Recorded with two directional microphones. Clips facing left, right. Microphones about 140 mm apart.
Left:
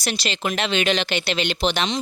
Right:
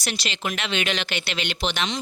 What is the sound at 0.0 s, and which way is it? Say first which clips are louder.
Speech: left 4 dB; 35° left (ahead or behind).